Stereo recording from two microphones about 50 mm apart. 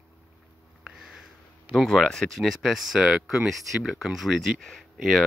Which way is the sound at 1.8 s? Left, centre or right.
Centre.